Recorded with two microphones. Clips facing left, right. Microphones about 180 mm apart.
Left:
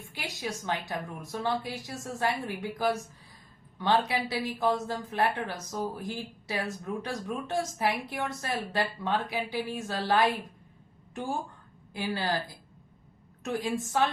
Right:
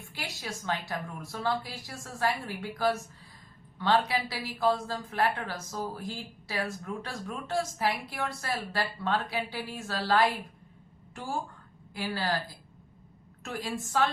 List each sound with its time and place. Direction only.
0.1 s a woman's voice: 20° left (ahead or behind)
11.9 s a woman's voice: 20° left (ahead or behind)
13.4 s a woman's voice: 15° left (ahead or behind)